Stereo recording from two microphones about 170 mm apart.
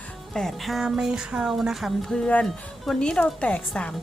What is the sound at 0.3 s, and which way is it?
Music, centre (ahead or behind).